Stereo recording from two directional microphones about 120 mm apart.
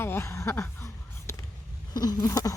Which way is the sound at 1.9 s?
30° left (ahead or behind).